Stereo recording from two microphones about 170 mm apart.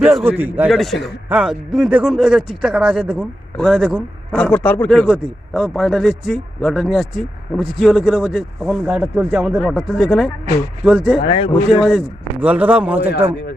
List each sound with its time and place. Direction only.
0.0 s speech: centre (ahead or behind)
0.7 s speech: centre (ahead or behind)
4.4 s speech: 5° left (ahead or behind)
11.3 s speech: 30° left (ahead or behind)
11.7 s speech: 5° right (ahead or behind)